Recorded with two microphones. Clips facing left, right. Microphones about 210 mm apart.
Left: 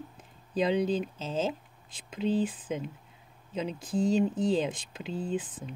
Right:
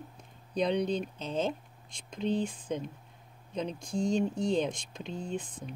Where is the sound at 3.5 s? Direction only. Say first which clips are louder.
Left 2 dB; 5° left (ahead or behind).